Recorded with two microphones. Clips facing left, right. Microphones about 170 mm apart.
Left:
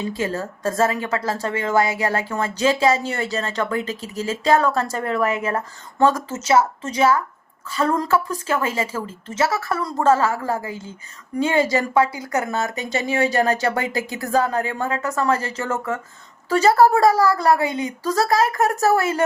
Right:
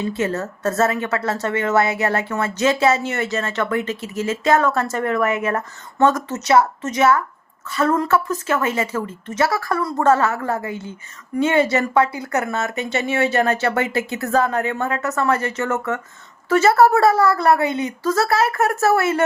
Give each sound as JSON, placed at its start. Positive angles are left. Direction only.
{"t": 0.1, "sound": "a woman's voice", "side_deg": 30}
{"t": 8.6, "sound": "a woman's voice", "side_deg": 30}
{"t": 9.6, "sound": "speech", "side_deg": 5}
{"t": 10.0, "sound": "speech", "side_deg": 30}
{"t": 14.2, "sound": "a woman's voice", "side_deg": 15}
{"t": 14.5, "sound": "speech", "side_deg": 30}